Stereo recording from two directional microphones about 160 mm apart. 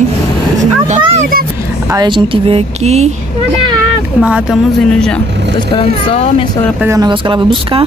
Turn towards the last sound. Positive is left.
turn(degrees=-35)  # may be behind; listen again after turning